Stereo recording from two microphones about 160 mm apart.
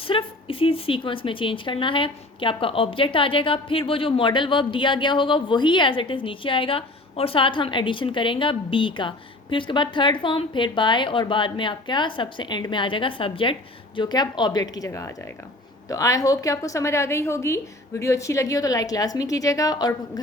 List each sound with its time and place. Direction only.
0.0 s a woman's voice: 35° left (ahead or behind)